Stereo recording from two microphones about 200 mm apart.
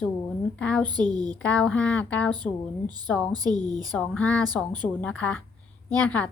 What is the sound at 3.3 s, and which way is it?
Speech, 20° right (ahead or behind).